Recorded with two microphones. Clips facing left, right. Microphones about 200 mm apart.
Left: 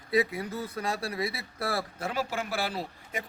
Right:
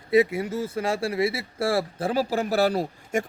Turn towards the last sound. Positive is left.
turn(degrees=-45)  # may be behind; listen again after turning